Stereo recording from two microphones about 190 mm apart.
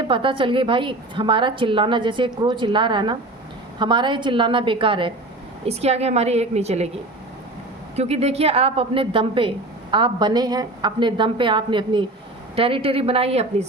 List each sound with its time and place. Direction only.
0.1 s a woman's voice: 25° right (ahead or behind)
7.9 s a woman's voice: 35° right (ahead or behind)